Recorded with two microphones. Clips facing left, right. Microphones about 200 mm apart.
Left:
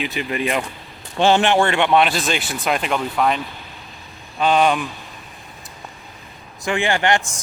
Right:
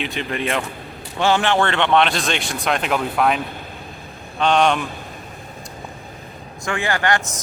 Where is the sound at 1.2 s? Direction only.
25° left (ahead or behind); by 4.9 s 5° left (ahead or behind).